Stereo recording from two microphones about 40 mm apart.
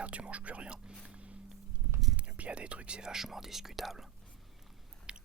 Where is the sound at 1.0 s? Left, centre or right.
Right.